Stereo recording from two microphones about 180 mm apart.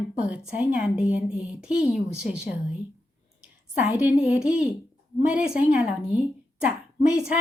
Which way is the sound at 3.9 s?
5° right (ahead or behind).